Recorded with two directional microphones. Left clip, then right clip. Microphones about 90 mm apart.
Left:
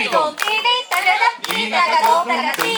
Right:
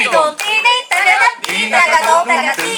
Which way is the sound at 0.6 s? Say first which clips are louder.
Right 6 dB; 35° right (ahead or behind).